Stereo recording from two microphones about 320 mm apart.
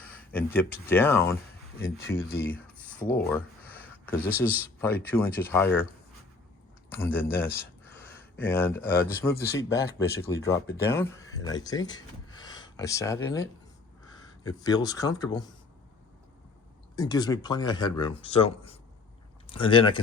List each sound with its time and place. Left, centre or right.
0.0 s speech: centre
3.2 s a sound: centre
4.4 s speech: centre
7.0 s speech: centre
16.9 s speech: centre